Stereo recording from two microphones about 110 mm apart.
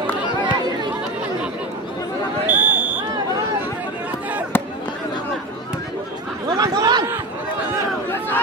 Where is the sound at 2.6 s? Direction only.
15° right (ahead or behind).